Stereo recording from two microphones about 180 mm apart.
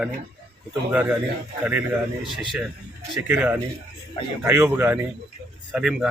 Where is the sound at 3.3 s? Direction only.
10° right (ahead or behind).